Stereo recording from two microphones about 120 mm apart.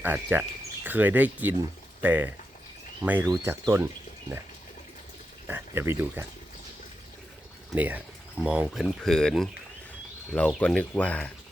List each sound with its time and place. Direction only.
0.0 s speech: 15° right (ahead or behind)
5.5 s speech: 20° right (ahead or behind)
7.8 s speech: 15° right (ahead or behind); by 11.3 s 10° left (ahead or behind)